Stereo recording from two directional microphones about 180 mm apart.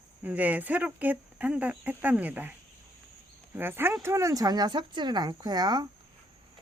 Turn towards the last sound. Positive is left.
turn(degrees=-25)  # may be behind; listen again after turning